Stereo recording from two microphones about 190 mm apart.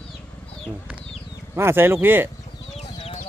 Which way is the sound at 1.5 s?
15° right (ahead or behind).